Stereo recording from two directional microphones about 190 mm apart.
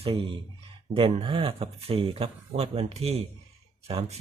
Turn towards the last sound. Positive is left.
turn(degrees=-30)  # may be behind; listen again after turning